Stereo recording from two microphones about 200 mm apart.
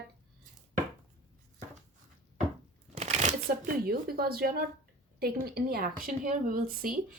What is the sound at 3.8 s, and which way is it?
Speech, 50° right (ahead or behind).